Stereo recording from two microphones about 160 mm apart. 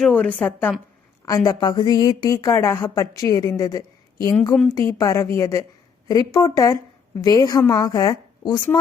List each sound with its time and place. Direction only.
0.0 s a woman's voice: 10° left (ahead or behind)
1.5 s a woman's voice: 25° left (ahead or behind)